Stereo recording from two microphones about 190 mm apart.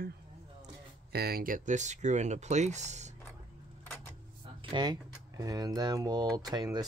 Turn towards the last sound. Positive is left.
turn(degrees=-20)  # may be behind; listen again after turning